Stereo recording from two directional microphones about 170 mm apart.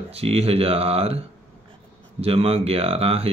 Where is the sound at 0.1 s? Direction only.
35° right (ahead or behind).